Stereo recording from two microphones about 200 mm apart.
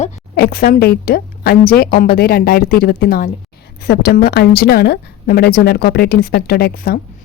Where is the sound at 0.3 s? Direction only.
50° left (ahead or behind).